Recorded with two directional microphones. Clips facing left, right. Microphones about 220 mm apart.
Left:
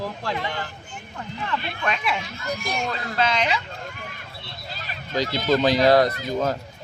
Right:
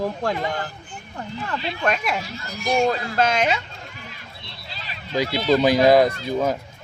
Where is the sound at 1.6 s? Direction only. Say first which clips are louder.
Right 4 dB; 55° left (ahead or behind).